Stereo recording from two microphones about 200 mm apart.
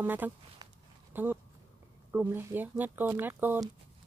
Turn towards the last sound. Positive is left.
turn(degrees=-10)  # may be behind; listen again after turning